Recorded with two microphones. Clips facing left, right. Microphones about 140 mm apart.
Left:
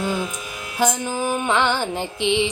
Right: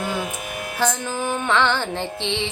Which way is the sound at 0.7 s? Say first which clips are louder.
Left 3 dB; 15° left (ahead or behind).